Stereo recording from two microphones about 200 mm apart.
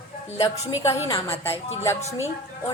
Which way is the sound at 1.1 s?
10° left (ahead or behind).